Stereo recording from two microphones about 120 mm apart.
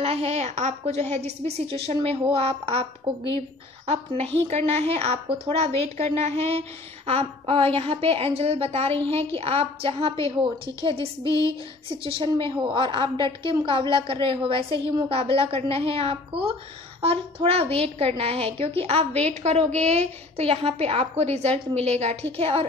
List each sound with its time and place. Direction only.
0.0 s a woman's voice: 60° right (ahead or behind)
19.2 s a woman's voice: 65° right (ahead or behind)